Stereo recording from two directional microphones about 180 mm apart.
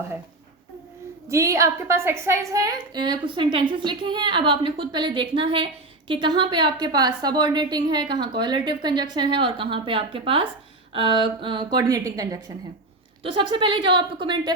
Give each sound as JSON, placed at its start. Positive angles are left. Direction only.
{"t": 1.3, "sound": "a woman's voice", "side_deg": -15}